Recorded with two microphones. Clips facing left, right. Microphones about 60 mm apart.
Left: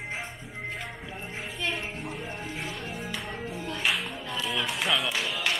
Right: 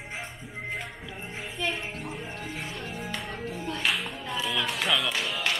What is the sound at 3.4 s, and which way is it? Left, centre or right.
Music, centre.